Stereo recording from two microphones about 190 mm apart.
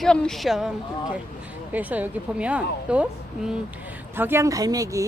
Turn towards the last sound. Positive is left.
turn(degrees=-15)  # may be behind; listen again after turning